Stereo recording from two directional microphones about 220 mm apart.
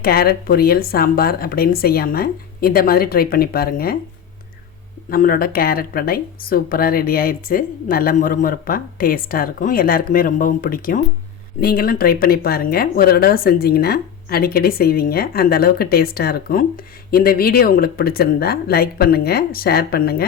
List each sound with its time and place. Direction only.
0.0 s speech: 45° left (ahead or behind)
5.1 s speech: 40° left (ahead or behind)